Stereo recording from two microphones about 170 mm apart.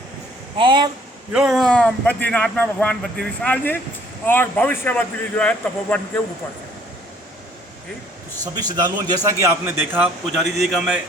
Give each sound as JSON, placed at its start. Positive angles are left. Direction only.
{"t": 0.6, "sound": "a man's voice", "side_deg": -25}
{"t": 1.3, "sound": "speech", "side_deg": -5}
{"t": 8.5, "sound": "a man's voice", "side_deg": -25}
{"t": 9.6, "sound": "speech", "side_deg": -10}